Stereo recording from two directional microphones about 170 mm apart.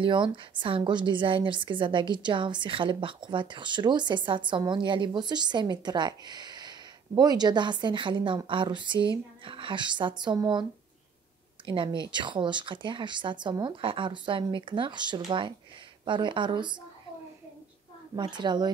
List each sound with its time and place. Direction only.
0.0 s speech: 30° right (ahead or behind)
18.1 s speech: 25° right (ahead or behind)